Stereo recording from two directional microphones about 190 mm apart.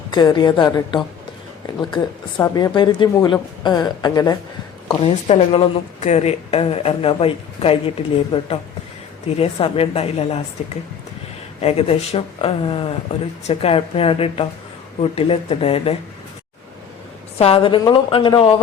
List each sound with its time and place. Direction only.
0.1 s a woman's voice: 25° left (ahead or behind)
2.6 s a woman's voice: 25° left (ahead or behind)
11.6 s a woman's voice: 30° left (ahead or behind)
17.3 s a woman's voice: 30° left (ahead or behind)